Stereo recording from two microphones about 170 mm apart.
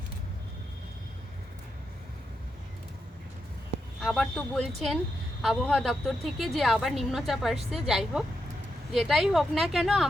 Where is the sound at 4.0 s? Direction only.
Centre (ahead or behind).